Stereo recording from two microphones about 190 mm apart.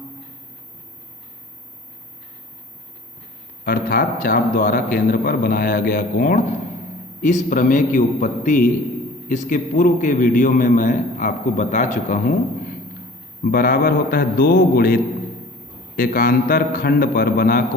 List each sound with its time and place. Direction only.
3.6 s a man's voice: 45° left (ahead or behind)
13.4 s a man's voice: 50° left (ahead or behind)